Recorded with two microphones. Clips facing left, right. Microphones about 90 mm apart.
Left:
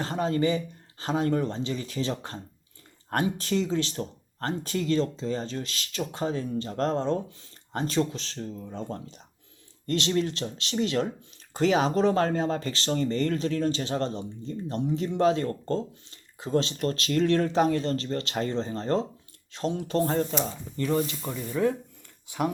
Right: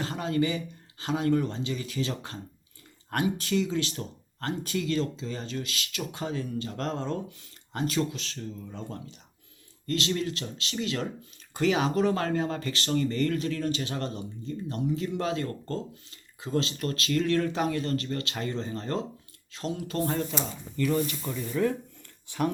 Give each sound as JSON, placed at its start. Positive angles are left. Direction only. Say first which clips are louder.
{"t": 0.0, "sound": "speech", "louder": "left 2 dB", "side_deg": 35}